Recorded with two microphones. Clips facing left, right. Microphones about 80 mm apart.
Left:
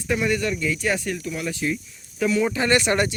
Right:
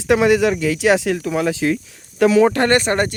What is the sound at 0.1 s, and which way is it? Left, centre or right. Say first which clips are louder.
Speech: right 9 dB; right.